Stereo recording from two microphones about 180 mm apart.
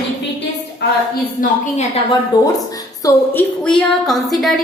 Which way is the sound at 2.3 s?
20° left (ahead or behind).